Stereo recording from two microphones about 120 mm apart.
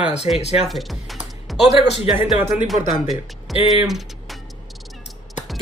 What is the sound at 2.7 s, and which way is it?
Speech, centre (ahead or behind).